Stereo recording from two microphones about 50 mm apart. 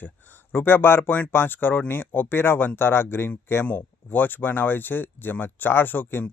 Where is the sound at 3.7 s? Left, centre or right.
Left.